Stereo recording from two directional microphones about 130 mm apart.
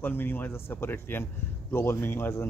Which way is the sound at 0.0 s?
15° left (ahead or behind).